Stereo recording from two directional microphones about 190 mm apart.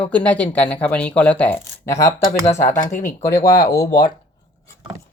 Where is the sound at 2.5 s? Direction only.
40° left (ahead or behind).